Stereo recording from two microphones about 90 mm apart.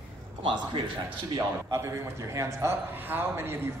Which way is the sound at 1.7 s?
30° right (ahead or behind).